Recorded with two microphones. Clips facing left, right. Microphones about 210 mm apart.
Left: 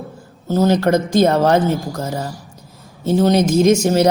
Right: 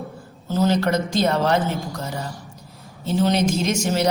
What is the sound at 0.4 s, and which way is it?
A woman's voice, 45° left (ahead or behind).